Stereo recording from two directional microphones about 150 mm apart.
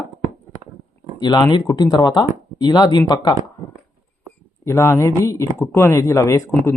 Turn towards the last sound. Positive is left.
turn(degrees=20)  # may be behind; listen again after turning